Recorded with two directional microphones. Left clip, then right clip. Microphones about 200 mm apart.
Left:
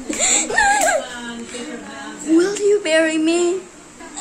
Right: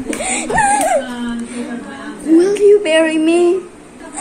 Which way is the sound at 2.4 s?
5° left (ahead or behind).